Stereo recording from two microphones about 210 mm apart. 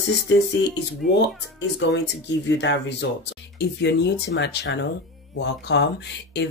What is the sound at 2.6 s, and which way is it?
Speech, 55° left (ahead or behind).